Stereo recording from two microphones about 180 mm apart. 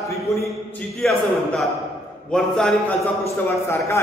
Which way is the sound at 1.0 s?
Centre (ahead or behind).